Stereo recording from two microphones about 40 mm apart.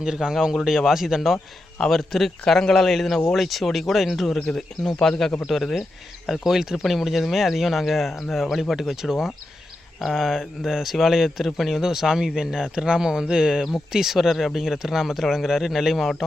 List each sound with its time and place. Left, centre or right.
0.0 s speech: centre
1.9 s speech: centre
4.5 s speech: centre
6.2 s speech: centre
11.8 s speech: centre